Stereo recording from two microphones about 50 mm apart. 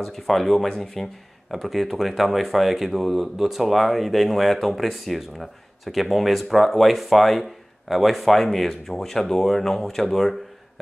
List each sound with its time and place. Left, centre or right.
0.0 s speech: centre